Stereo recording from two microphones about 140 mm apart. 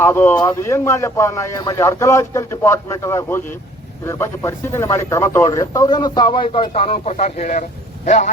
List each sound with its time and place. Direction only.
0.0 s speech: 20° left (ahead or behind); by 8.3 s 55° left (ahead or behind)